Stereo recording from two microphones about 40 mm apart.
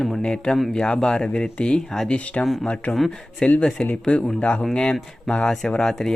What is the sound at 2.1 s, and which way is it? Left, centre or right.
Speech, left.